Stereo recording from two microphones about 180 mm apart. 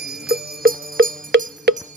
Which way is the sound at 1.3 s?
75° right (ahead or behind).